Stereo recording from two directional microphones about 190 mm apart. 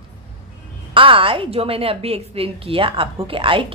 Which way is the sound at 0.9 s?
25° right (ahead or behind).